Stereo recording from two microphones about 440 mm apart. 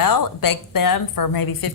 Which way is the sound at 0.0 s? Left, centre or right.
Left.